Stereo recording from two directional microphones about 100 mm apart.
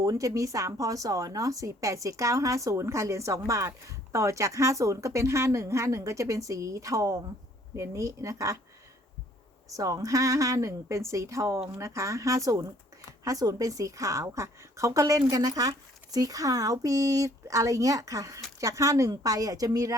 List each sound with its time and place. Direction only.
0.0 s speech: 35° right (ahead or behind)
9.6 s speech: 35° right (ahead or behind)